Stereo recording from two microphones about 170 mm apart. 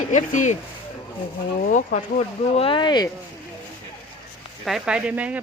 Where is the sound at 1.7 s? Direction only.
50° left (ahead or behind).